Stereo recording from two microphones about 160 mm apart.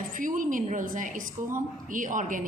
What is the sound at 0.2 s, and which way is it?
A woman's voice, 55° right (ahead or behind).